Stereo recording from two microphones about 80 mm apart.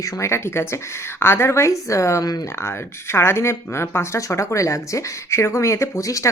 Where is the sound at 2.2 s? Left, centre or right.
Left.